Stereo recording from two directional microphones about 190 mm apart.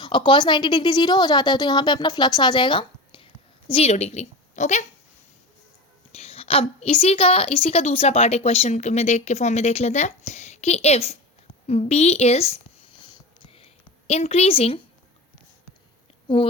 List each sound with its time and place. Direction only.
0.0 s a woman's voice: 25° left (ahead or behind)
6.1 s a woman's voice: 35° left (ahead or behind)
13.4 s whispering: 30° left (ahead or behind)
14.1 s a woman's voice: 35° left (ahead or behind)
16.3 s a woman's voice: 25° left (ahead or behind)